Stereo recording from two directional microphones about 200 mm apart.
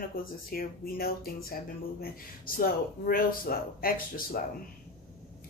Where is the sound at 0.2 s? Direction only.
45° left (ahead or behind).